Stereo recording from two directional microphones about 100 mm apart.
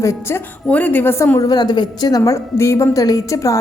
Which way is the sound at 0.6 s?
15° left (ahead or behind).